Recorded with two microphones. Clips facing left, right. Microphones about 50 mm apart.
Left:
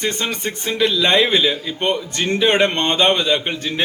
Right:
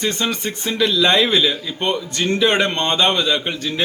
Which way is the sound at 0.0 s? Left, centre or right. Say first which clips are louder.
Right 1 dB; left.